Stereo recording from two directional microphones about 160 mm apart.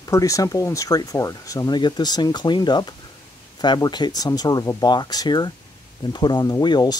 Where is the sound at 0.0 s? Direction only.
20° left (ahead or behind).